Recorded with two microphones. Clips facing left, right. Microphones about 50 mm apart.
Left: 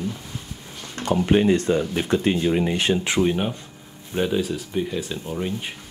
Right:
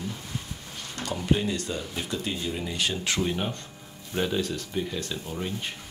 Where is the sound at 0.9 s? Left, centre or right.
Left.